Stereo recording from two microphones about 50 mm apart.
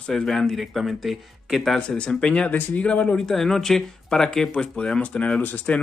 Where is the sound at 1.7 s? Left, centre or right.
Centre.